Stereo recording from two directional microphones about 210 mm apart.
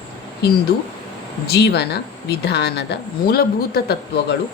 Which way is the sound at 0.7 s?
50° left (ahead or behind).